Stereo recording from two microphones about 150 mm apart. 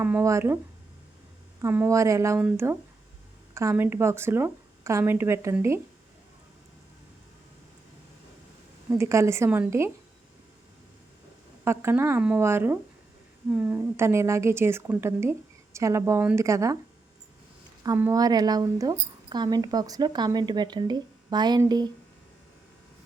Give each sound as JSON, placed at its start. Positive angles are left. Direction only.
{"t": 0.0, "sound": "a woman's voice", "side_deg": -15}
{"t": 1.6, "sound": "a woman's voice", "side_deg": -15}
{"t": 8.9, "sound": "a woman's voice", "side_deg": -20}
{"t": 11.6, "sound": "a woman's voice", "side_deg": -15}
{"t": 17.8, "sound": "a woman's voice", "side_deg": -20}